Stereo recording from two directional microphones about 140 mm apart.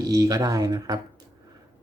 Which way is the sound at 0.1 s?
25° right (ahead or behind).